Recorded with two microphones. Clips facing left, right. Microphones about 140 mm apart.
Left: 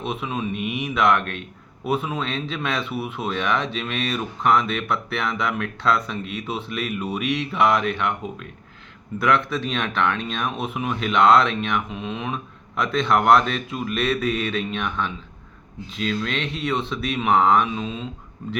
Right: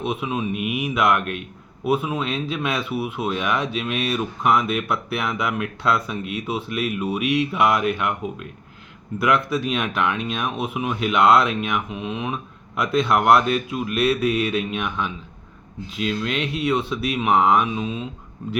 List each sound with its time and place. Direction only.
0.0 s a man's voice: 10° right (ahead or behind)